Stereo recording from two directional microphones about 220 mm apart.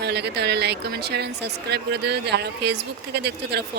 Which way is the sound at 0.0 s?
50° right (ahead or behind).